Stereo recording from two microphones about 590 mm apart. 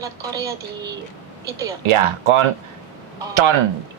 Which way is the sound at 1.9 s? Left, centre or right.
Right.